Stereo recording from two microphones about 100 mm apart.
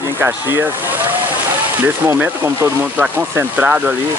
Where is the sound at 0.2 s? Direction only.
20° right (ahead or behind).